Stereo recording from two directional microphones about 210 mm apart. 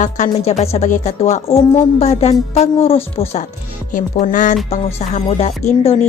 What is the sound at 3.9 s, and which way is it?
Speech, 40° left (ahead or behind).